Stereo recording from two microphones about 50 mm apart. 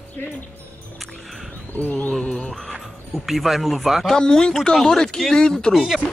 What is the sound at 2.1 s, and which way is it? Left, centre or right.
Speech, centre.